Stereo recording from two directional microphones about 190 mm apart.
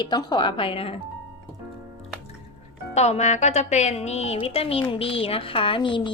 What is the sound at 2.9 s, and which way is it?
A woman's voice, 35° left (ahead or behind).